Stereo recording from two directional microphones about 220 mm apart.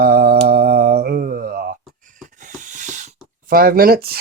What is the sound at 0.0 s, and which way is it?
Mantra, 45° right (ahead or behind).